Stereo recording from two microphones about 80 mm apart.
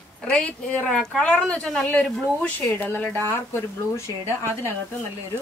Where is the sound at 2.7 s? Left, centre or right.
Left.